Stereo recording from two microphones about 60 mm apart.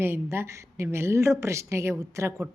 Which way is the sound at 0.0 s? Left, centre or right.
Right.